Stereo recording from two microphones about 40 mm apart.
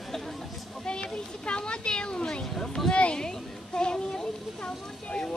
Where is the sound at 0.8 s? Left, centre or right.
Left.